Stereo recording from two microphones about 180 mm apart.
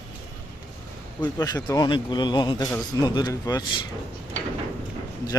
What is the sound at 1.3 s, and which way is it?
A man's voice, 20° left (ahead or behind).